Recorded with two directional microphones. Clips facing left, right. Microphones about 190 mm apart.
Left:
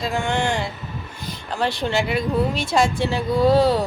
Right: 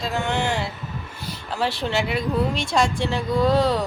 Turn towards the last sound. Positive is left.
turn(degrees=5)  # may be behind; listen again after turning